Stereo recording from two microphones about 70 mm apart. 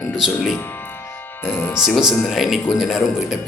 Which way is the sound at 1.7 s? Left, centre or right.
Centre.